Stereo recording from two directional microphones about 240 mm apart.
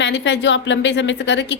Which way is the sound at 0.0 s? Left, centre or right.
Left.